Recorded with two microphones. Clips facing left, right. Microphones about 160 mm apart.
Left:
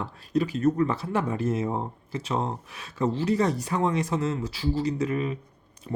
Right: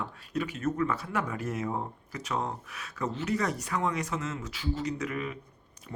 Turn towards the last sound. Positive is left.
turn(degrees=30)  # may be behind; listen again after turning